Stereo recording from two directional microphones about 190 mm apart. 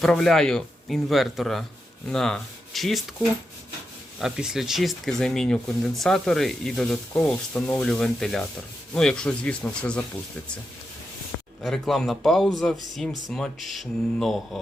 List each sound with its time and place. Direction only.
0.0 s speech: centre (ahead or behind)
4.2 s speech: centre (ahead or behind)
11.6 s speech: centre (ahead or behind)